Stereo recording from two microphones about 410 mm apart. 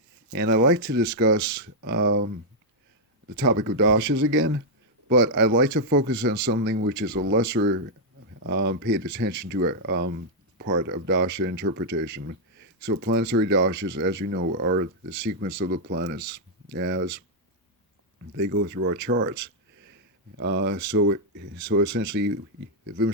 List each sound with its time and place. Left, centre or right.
0.3 s speech: right
3.3 s speech: right
18.3 s speech: right